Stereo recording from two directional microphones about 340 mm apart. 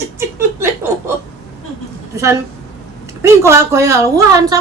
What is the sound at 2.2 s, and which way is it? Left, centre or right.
A woman's voice, centre.